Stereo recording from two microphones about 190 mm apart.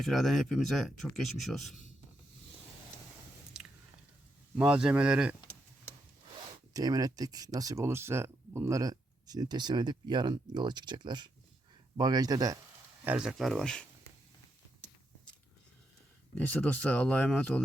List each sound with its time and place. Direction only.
0.0 s speech: centre (ahead or behind)
4.5 s speech: 5° right (ahead or behind)
6.7 s speech: 20° right (ahead or behind)
13.1 s speech: 5° right (ahead or behind)
16.5 s speech: 5° left (ahead or behind)